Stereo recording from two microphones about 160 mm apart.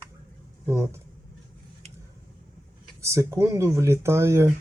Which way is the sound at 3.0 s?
20° right (ahead or behind).